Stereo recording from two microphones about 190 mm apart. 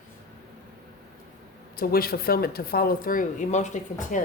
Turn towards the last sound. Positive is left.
turn(degrees=40)  # may be behind; listen again after turning